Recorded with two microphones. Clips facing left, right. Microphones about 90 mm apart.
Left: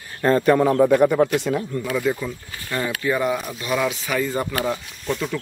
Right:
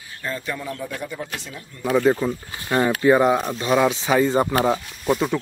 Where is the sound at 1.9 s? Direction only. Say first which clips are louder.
Right 6 dB; 35° right (ahead or behind).